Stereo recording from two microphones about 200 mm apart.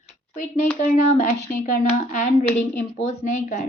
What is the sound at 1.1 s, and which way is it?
A woman's voice, 35° left (ahead or behind).